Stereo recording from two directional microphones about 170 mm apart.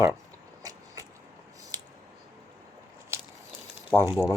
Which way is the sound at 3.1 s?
15° right (ahead or behind).